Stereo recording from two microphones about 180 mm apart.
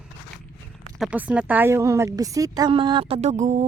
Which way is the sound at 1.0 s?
5° right (ahead or behind).